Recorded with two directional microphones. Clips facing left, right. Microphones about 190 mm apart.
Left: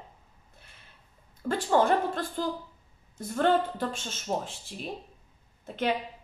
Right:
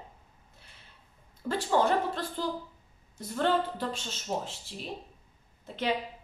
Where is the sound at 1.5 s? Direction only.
50° left (ahead or behind).